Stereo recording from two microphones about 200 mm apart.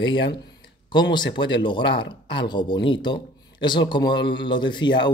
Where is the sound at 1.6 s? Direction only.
25° left (ahead or behind).